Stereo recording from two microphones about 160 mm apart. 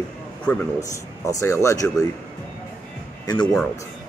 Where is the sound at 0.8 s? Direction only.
20° left (ahead or behind).